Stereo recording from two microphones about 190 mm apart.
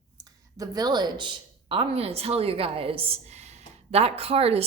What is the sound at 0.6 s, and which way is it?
Speech, 20° right (ahead or behind).